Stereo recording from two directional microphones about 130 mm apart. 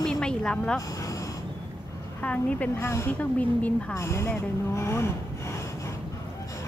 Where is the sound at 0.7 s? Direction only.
25° left (ahead or behind).